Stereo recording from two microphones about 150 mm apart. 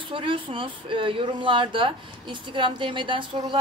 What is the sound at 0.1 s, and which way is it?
A woman's voice, 35° right (ahead or behind).